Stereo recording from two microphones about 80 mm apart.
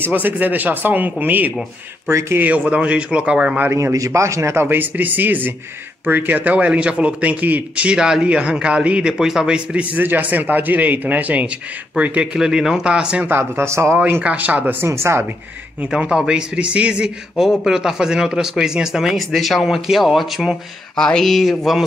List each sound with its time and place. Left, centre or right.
0.0 s speech: right
2.0 s speech: right
2.4 s speech: centre
3.7 s speech: right; by 12.3 s centre
12.4 s speech: centre
13.3 s speech: right
13.9 s speech: right
14.9 s speech: right
15.8 s speech: centre